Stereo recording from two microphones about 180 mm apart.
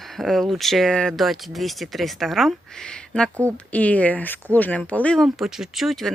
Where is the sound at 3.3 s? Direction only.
15° right (ahead or behind).